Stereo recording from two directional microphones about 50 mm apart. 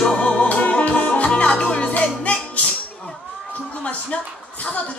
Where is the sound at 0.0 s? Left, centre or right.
Centre.